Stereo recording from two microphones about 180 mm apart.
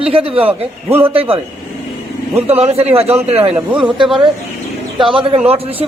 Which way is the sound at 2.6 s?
35° right (ahead or behind).